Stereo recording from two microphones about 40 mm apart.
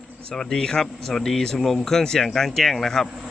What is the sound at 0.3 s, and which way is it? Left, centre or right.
Speech, centre.